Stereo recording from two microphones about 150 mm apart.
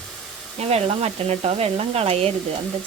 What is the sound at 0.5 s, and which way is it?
Speech, 45° right (ahead or behind).